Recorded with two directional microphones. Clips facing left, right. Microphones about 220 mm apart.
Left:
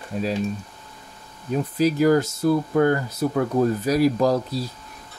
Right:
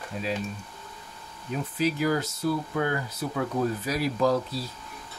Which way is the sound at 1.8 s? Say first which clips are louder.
Left 8 dB; 40° left (ahead or behind).